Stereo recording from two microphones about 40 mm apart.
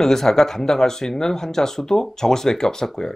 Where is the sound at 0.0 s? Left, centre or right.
Centre.